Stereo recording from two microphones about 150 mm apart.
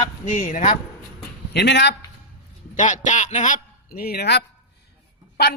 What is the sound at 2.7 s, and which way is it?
A man's voice, 55° left (ahead or behind).